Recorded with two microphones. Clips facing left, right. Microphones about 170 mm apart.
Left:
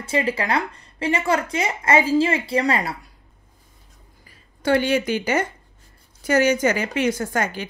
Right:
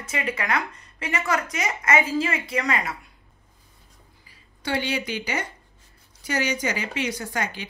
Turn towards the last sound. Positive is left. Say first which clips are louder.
# left 5 dB
turn(degrees=50)  # may be behind; listen again after turning